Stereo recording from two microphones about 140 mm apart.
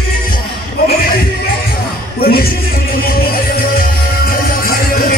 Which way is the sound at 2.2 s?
90° left.